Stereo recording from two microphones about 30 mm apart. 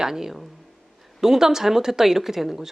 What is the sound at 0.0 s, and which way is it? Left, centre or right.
Speech, centre.